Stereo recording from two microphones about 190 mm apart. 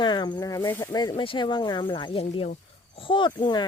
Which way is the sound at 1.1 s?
25° left (ahead or behind).